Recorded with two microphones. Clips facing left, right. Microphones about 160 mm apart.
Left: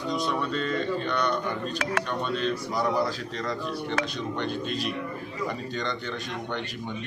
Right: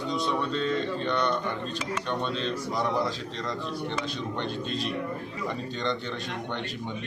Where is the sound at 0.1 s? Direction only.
Centre (ahead or behind).